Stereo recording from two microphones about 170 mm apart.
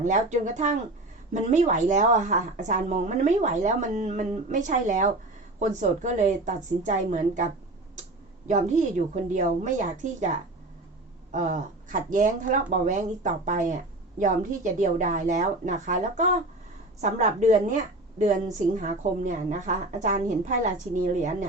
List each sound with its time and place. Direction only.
0.0 s speech: 50° right (ahead or behind)